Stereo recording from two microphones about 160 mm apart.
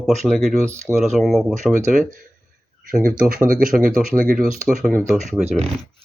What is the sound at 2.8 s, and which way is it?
Speech, 65° right (ahead or behind).